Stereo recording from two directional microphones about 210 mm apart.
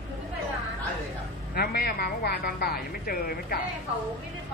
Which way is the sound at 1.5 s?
50° left (ahead or behind).